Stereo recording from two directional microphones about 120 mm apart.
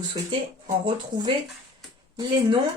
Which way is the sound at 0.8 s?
45° right (ahead or behind).